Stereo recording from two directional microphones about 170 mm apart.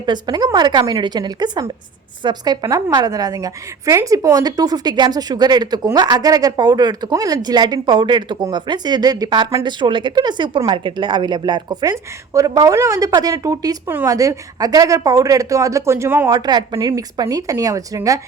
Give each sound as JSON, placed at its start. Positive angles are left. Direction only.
{"t": 0.0, "sound": "a woman's voice", "side_deg": -25}